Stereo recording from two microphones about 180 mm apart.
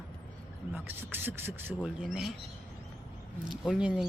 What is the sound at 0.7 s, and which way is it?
Speech, 10° right (ahead or behind).